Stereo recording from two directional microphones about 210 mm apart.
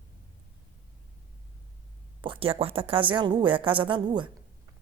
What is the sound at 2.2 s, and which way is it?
Speech, 25° right (ahead or behind).